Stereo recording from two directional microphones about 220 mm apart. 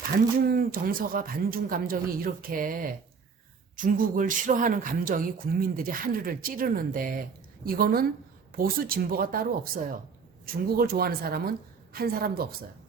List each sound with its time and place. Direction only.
0.4 s a woman's voice: 40° right (ahead or behind)